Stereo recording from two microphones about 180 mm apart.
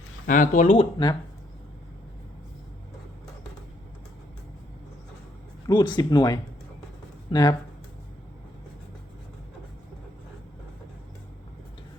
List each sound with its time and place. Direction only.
0.3 s speech: 45° left (ahead or behind)
5.6 s speech: 25° left (ahead or behind)